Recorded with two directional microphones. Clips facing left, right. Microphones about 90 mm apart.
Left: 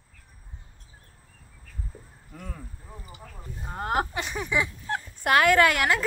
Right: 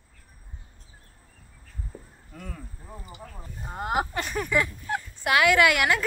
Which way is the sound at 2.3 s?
20° left (ahead or behind).